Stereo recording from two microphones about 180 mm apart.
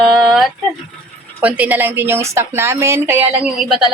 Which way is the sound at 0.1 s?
Centre (ahead or behind).